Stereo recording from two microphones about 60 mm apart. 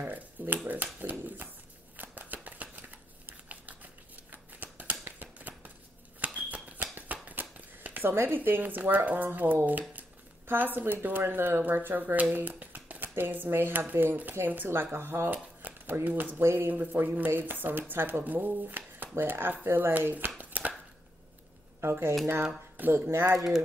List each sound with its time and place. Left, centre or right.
0.0 s speech: right
2.0 s shuffling cards: right
3.3 s scissors: right
5.0 s a sound: right
6.2 s shuffling cards: right
12.0 s a sound: right
13.1 s speech: right
21.8 s speech: right